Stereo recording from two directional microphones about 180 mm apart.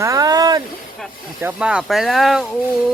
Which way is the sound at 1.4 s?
10° right (ahead or behind).